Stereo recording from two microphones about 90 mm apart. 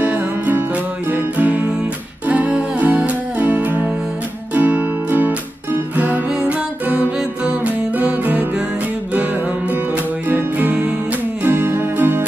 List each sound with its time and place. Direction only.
0.0 s music: 20° right (ahead or behind)
10.3 s music: 20° right (ahead or behind)